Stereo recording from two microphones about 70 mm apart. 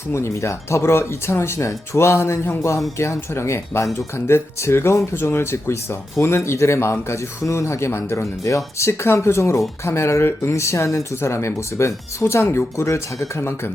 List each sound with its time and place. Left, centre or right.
0.1 s speech: left